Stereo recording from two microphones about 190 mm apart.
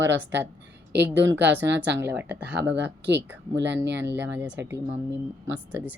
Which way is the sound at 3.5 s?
65° right (ahead or behind).